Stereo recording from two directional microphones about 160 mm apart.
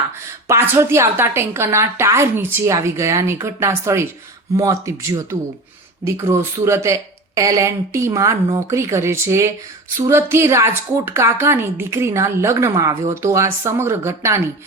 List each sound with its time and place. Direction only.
0.4 s a woman's voice: 15° right (ahead or behind)